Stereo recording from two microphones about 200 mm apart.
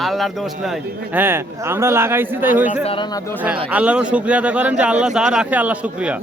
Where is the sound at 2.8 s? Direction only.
25° left (ahead or behind).